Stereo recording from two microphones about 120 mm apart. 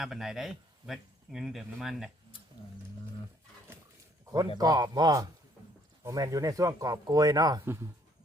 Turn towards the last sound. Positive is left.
turn(degrees=-35)  # may be behind; listen again after turning